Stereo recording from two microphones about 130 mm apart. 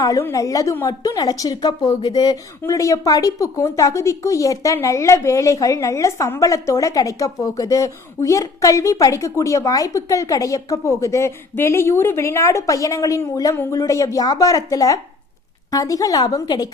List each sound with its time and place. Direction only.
0.0 s a woman's voice: 25° left (ahead or behind)